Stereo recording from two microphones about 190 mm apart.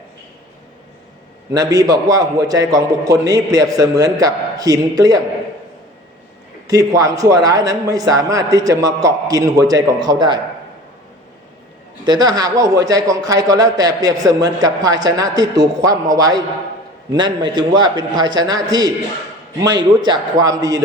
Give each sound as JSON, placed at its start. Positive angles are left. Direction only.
{"t": 1.5, "sound": "a man's voice", "side_deg": -20}
{"t": 6.7, "sound": "a man's voice", "side_deg": -20}
{"t": 12.0, "sound": "a man's voice", "side_deg": -20}
{"t": 20.1, "sound": "a man's voice", "side_deg": -20}